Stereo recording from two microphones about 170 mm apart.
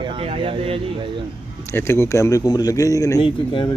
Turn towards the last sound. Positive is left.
turn(degrees=30)  # may be behind; listen again after turning